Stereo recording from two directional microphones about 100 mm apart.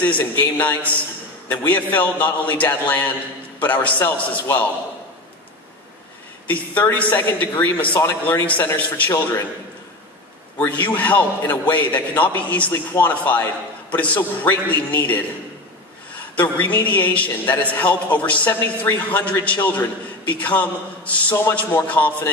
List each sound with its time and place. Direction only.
0.0 s a man's voice: 15° left (ahead or behind)
6.4 s a man's voice: 15° left (ahead or behind)
10.6 s a man's voice: 15° left (ahead or behind)